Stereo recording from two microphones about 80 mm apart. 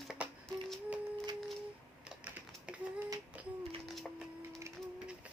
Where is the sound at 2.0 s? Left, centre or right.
Centre.